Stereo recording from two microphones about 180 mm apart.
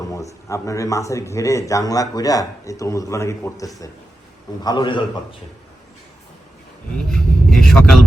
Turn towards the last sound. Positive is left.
turn(degrees=5)  # may be behind; listen again after turning